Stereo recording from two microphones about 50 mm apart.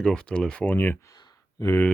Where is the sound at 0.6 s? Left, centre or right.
Left.